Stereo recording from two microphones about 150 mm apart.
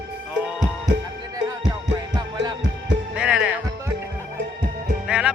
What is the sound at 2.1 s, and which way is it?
Music, 30° right (ahead or behind).